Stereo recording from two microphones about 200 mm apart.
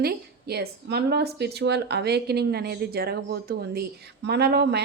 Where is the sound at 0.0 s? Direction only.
50° right (ahead or behind).